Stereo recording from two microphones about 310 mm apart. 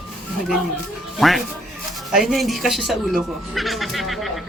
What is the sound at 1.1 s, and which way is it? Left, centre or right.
Speech, centre.